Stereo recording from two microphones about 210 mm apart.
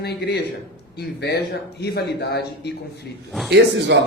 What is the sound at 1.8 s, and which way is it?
Speech, 50° left (ahead or behind).